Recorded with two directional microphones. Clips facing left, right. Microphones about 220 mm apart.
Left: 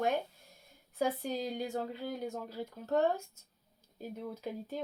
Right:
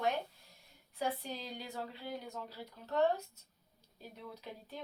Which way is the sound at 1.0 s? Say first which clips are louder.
Left 6 dB; 45° left (ahead or behind).